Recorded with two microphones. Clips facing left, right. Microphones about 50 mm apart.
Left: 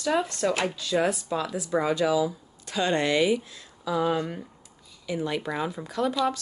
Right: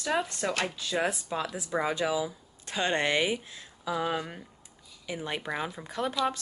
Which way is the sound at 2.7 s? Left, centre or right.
Right.